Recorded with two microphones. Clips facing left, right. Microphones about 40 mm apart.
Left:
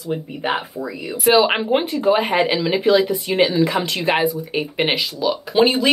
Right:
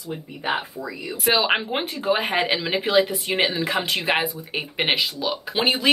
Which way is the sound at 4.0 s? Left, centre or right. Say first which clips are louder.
Left 5 dB; centre.